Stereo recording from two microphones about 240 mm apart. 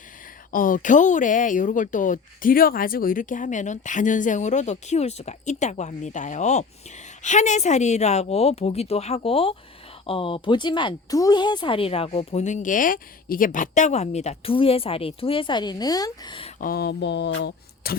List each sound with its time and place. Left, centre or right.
0.5 s speech: left; by 16.5 s centre
16.6 s speech: left